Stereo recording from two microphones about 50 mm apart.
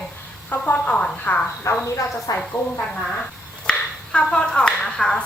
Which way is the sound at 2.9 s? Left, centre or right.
Centre.